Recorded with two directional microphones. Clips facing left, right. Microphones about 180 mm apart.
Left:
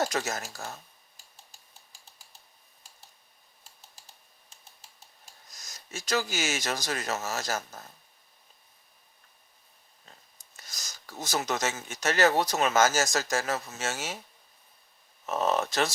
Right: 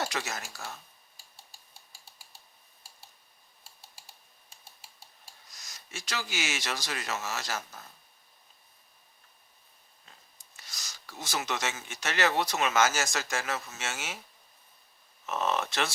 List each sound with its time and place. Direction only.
0.0 s speech: 40° left (ahead or behind)
5.5 s speech: 45° left (ahead or behind)
10.6 s speech: 45° left (ahead or behind)
15.3 s speech: 40° left (ahead or behind)